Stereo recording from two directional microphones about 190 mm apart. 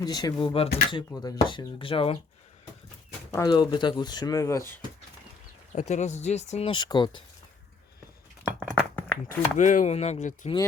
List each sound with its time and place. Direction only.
0.0 s speech: 20° left (ahead or behind)
3.3 s speech: 20° left (ahead or behind)
5.7 s speech: 35° left (ahead or behind)
8.5 s a sound: 5° left (ahead or behind)
9.6 s speech: 40° left (ahead or behind)